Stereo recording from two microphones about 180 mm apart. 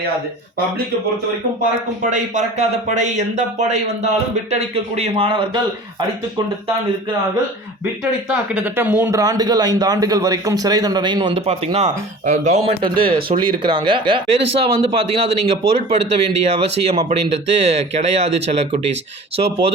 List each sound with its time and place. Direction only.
2.0 s speech: 45° right (ahead or behind); by 5.6 s 25° right (ahead or behind)
8.3 s speech: 10° right (ahead or behind); by 12.7 s 40° right (ahead or behind)
13.0 s speech: 30° right (ahead or behind)